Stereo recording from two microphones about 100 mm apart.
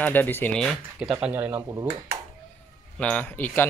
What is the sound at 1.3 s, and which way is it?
Speech, 30° right (ahead or behind).